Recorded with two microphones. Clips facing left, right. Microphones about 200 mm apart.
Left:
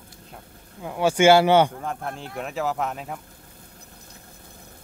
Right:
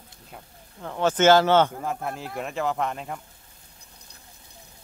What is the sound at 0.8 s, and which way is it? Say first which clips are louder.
Speech: left 2 dB; 10° left (ahead or behind).